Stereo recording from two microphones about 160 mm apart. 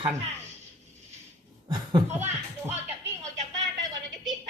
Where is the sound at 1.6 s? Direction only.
30° right (ahead or behind).